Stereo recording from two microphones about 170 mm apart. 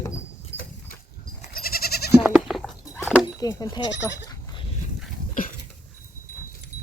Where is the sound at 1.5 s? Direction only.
60° left (ahead or behind).